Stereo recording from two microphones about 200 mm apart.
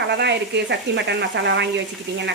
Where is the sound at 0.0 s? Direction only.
60° right (ahead or behind).